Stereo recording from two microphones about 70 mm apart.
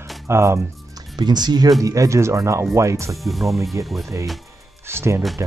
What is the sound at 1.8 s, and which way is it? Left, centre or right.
Speech, right.